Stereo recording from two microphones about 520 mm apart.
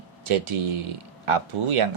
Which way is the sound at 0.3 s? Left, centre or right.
Right.